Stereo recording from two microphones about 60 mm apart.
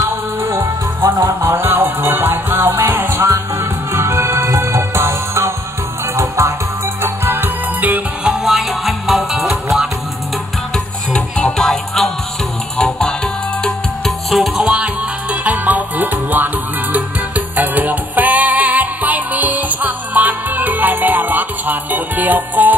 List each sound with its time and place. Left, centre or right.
0.4 s music: right
3.1 s music: right
3.9 s music: right
6.1 s music: right
7.0 s music: right
8.2 s music: centre
11.4 s music: centre
15.4 s music: right
17.6 s music: right